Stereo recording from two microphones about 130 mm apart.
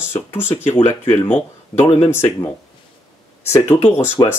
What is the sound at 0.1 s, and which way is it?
Speech, 20° left (ahead or behind).